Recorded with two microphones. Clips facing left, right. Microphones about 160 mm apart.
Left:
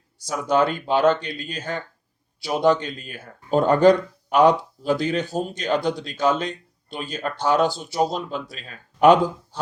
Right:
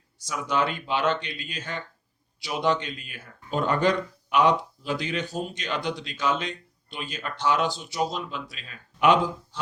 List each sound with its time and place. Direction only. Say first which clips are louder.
0.3 s speech: left 6 dB; 40° left (ahead or behind)